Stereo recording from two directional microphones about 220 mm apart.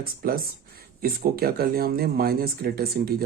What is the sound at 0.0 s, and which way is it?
Speech, 40° right (ahead or behind).